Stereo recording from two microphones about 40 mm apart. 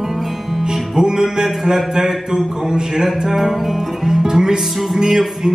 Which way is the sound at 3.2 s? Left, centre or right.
Centre.